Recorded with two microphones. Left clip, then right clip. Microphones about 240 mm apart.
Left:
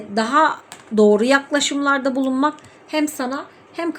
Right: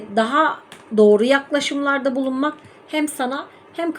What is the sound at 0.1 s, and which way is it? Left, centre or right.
A woman's voice, centre.